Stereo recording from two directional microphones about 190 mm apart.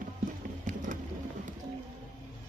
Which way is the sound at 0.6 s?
40° right (ahead or behind).